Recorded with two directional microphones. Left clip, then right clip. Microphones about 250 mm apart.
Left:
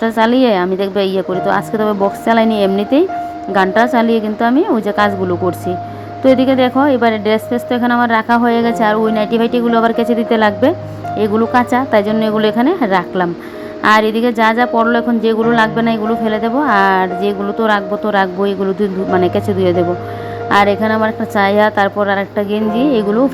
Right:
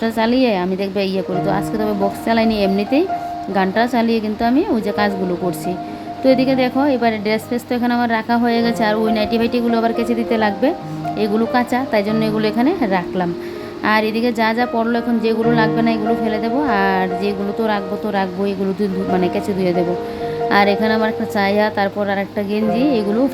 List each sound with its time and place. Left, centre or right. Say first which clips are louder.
0.0 s a woman's voice: left 5 dB; centre